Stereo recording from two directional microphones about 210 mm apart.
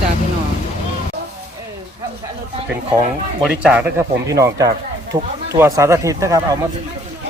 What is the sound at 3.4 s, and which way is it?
Speech, 5° right (ahead or behind).